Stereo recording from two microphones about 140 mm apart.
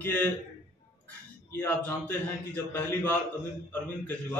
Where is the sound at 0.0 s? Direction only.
15° left (ahead or behind).